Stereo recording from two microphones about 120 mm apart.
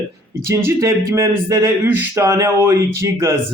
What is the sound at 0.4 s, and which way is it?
A man's voice, 20° right (ahead or behind).